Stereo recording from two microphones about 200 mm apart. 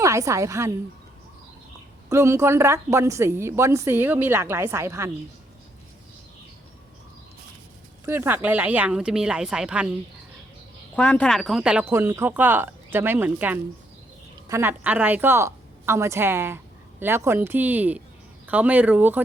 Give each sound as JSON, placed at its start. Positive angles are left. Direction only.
{"t": 0.0, "sound": "a woman's voice", "side_deg": -15}
{"t": 2.0, "sound": "a woman's voice", "side_deg": -15}
{"t": 8.0, "sound": "speech", "side_deg": -10}
{"t": 10.9, "sound": "a woman's voice", "side_deg": 5}